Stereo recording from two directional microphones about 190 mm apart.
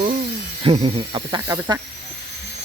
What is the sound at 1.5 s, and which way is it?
Speech, 15° right (ahead or behind).